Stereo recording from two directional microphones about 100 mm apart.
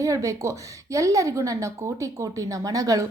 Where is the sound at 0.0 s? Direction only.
35° right (ahead or behind).